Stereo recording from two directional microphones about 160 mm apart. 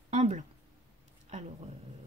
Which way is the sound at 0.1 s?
45° right (ahead or behind).